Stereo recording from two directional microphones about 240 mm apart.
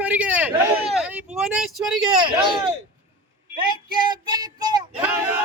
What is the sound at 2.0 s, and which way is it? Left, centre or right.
Speech, centre.